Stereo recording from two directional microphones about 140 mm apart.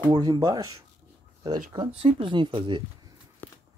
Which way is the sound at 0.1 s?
30° right (ahead or behind).